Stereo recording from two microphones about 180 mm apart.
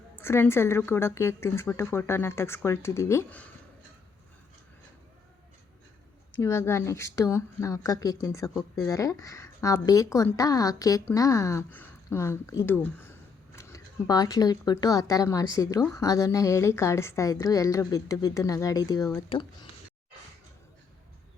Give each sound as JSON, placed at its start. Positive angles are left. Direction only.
{"t": 0.2, "sound": "speech", "side_deg": 15}
{"t": 6.4, "sound": "speech", "side_deg": 15}